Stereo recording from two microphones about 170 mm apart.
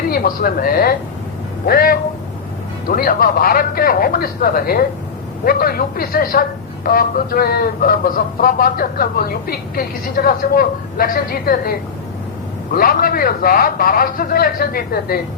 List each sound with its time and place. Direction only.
0.1 s speech: 60° left (ahead or behind)